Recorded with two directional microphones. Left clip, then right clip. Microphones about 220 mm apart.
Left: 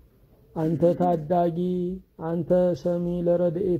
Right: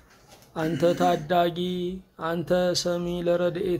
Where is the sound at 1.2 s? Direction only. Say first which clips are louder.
Even; 20° left (ahead or behind).